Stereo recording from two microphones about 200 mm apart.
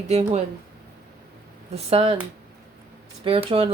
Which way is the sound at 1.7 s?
30° right (ahead or behind).